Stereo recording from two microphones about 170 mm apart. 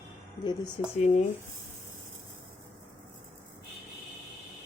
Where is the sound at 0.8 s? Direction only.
30° left (ahead or behind).